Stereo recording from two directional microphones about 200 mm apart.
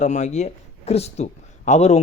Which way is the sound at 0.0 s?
35° left (ahead or behind).